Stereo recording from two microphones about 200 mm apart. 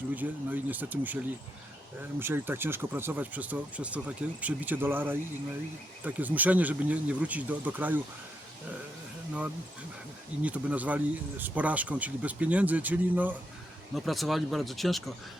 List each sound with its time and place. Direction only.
0.1 s speech: 10° right (ahead or behind)
10.4 s speech: 5° right (ahead or behind)